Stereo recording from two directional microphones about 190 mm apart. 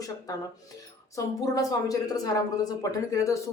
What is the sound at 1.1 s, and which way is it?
A woman's voice, 20° left (ahead or behind).